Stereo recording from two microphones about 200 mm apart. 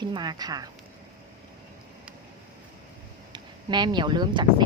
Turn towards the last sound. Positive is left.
turn(degrees=-20)  # may be behind; listen again after turning